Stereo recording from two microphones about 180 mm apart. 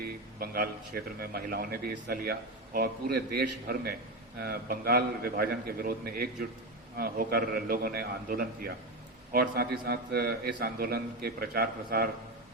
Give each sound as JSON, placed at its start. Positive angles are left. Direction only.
{"t": 0.0, "sound": "a man's voice", "side_deg": -55}